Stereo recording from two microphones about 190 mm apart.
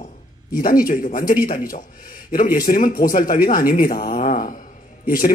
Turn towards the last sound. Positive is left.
turn(degrees=45)  # may be behind; listen again after turning